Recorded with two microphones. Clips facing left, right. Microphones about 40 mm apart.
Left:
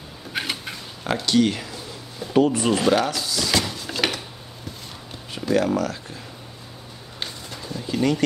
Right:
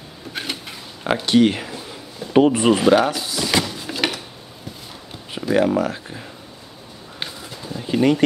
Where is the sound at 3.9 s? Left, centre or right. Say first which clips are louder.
Left 1 dB; centre.